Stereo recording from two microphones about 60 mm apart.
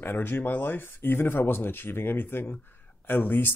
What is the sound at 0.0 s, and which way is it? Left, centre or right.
Speech, left.